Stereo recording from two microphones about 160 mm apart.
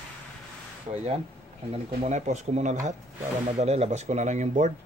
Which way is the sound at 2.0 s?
45° right (ahead or behind).